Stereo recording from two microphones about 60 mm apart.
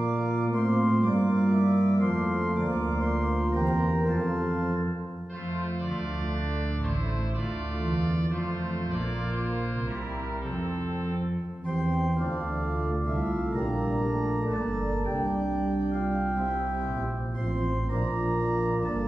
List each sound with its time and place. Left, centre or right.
0.0 s organ: centre
0.7 s organ: right
1.4 s organ: centre
4.5 s organ: right
12.0 s organ: centre
13.6 s organ: centre
15.3 s organ: centre
15.9 s organ: left
18.5 s organ: centre